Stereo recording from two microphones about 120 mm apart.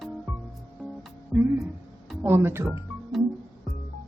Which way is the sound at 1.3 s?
15° right (ahead or behind).